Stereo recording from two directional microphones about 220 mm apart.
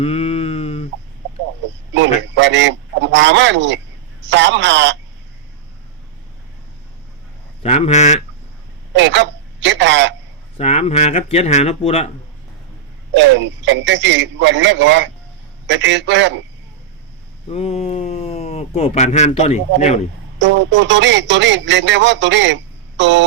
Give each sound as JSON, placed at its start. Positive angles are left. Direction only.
{"t": 0.0, "sound": "a sound", "side_deg": 25}
{"t": 1.9, "sound": "speech", "side_deg": -55}
{"t": 7.6, "sound": "speech", "side_deg": 30}
{"t": 8.9, "sound": "speech", "side_deg": -55}
{"t": 10.6, "sound": "speech", "side_deg": 30}
{"t": 13.1, "sound": "speech", "side_deg": -55}
{"t": 17.5, "sound": "speech", "side_deg": 30}
{"t": 20.4, "sound": "speech", "side_deg": -55}